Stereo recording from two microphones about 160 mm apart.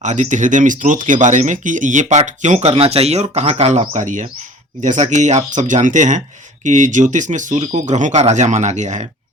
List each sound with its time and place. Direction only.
0.0 s speech: 45° right (ahead or behind)